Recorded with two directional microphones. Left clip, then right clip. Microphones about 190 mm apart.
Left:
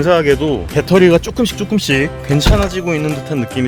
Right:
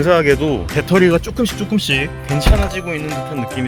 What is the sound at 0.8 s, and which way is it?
Speech, 35° left (ahead or behind).